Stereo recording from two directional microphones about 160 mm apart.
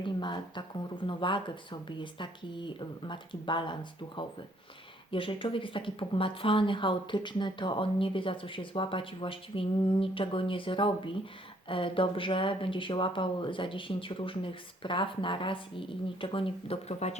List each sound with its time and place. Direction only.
0.0 s speech: 30° left (ahead or behind)